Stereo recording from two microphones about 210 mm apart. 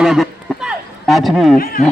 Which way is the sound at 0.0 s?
Centre (ahead or behind).